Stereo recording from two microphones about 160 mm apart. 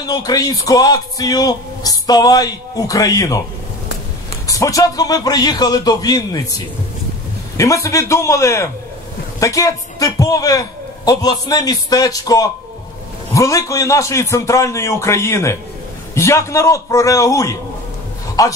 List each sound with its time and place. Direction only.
0.0 s speech: 25° left (ahead or behind)
4.5 s speech: 20° left (ahead or behind)
7.5 s speech: 20° left (ahead or behind)